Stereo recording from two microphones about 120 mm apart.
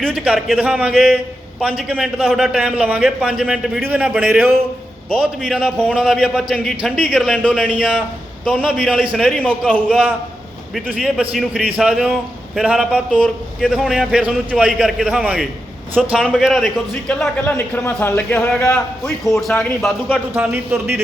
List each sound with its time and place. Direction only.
0.0 s a man's voice: 5° right (ahead or behind)
10.8 s a man's voice: 5° right (ahead or behind)
13.1 s a man's voice: 10° left (ahead or behind)
13.7 s a man's voice: 5° right (ahead or behind)
20.3 s a man's voice: 15° right (ahead or behind)